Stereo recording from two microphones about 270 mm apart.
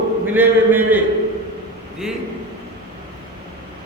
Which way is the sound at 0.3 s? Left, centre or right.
Centre.